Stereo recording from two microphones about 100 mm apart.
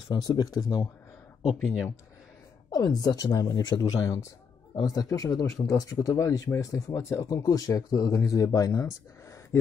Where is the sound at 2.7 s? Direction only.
40° left (ahead or behind).